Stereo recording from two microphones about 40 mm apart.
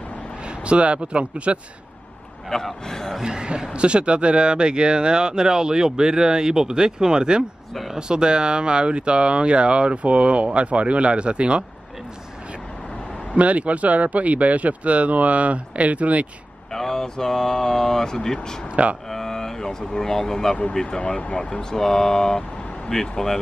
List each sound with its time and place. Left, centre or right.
0.7 s speech: right
2.5 s speech: centre
3.3 s speech: right
13.3 s speech: right
16.7 s speech: centre
21.0 s speech: left
21.5 s speech: centre